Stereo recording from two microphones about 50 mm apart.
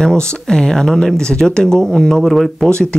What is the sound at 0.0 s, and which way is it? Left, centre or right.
Speech, centre.